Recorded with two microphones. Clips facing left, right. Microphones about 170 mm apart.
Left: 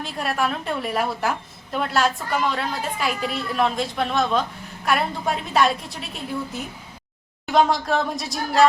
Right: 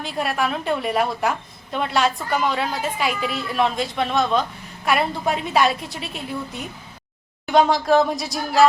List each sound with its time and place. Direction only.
0.0 s a woman's voice: centre (ahead or behind)